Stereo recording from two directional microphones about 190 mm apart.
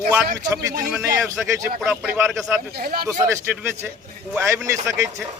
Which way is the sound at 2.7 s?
50° right (ahead or behind).